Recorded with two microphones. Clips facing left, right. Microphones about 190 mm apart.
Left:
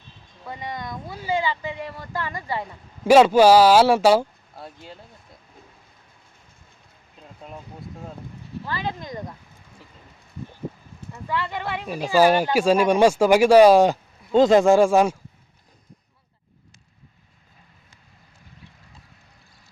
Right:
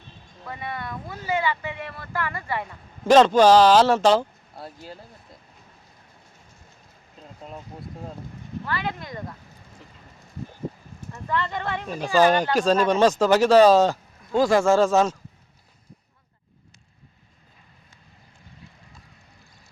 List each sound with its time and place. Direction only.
0.4 s speech: 15° left (ahead or behind)
4.6 s speech: centre (ahead or behind)
8.6 s speech: 20° left (ahead or behind)
11.1 s speech: 10° left (ahead or behind)